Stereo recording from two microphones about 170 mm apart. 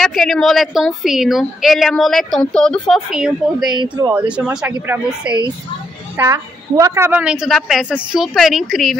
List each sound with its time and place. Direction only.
0.0 s a woman's voice: centre (ahead or behind)
3.7 s speech: 25° right (ahead or behind)
4.1 s a woman's voice: 10° right (ahead or behind)